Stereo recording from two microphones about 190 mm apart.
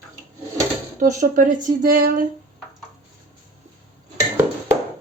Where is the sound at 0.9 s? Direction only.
45° right (ahead or behind).